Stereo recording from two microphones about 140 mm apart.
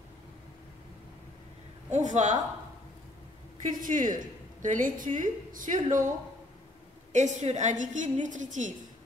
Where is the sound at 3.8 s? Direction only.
70° right (ahead or behind).